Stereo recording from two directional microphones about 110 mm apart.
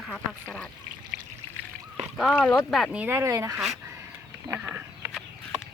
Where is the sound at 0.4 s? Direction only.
10° left (ahead or behind).